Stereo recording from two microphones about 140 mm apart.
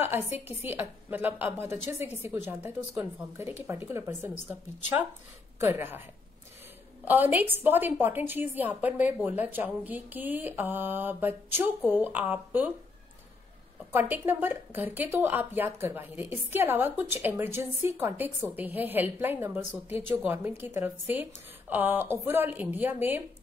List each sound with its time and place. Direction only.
0.0 s speech: 15° right (ahead or behind)
7.1 s speech: 15° right (ahead or behind)
13.9 s speech: 15° right (ahead or behind)